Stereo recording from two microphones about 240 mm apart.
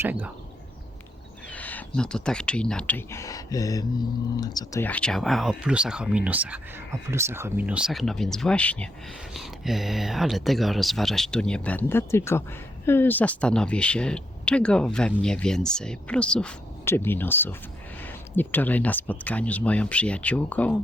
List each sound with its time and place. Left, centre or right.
0.0 s speech: centre
1.5 s speech: centre